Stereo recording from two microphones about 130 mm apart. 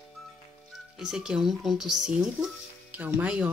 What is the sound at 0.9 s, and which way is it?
Speech, 5° right (ahead or behind).